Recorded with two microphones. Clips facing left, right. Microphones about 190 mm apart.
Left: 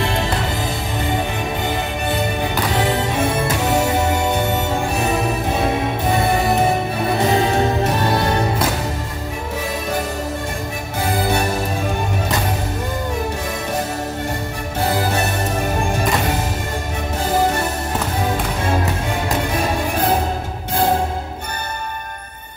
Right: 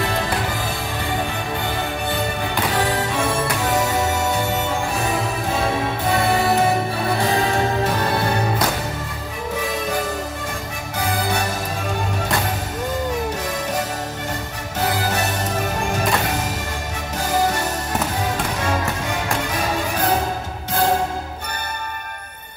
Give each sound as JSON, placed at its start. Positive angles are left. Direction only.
{"t": 7.2, "sound": "music", "side_deg": 25}